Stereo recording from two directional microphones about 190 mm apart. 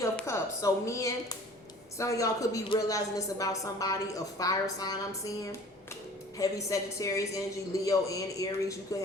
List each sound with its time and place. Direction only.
0.0 s a woman's voice: 15° left (ahead or behind)